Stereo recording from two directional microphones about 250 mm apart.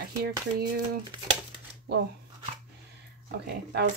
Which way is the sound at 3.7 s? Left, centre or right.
Right.